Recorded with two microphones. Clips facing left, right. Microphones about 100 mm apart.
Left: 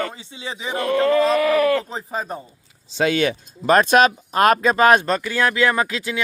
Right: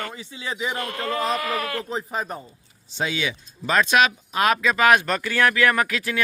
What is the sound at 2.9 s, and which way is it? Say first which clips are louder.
Speech: left 7 dB; 60° left (ahead or behind).